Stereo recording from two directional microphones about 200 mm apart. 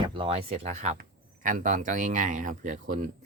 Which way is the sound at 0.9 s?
40° right (ahead or behind).